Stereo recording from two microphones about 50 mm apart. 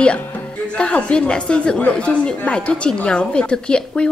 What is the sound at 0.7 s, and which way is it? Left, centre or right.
A woman's voice, left.